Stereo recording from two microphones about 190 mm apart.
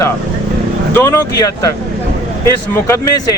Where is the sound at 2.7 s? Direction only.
15° left (ahead or behind).